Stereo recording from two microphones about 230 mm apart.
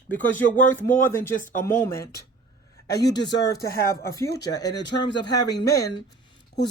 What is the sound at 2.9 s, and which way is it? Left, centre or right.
Speech, left.